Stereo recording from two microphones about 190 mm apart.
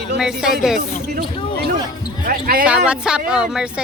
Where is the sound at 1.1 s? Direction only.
55° right (ahead or behind).